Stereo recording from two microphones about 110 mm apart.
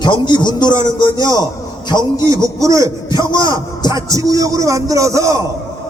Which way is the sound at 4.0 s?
30° right (ahead or behind).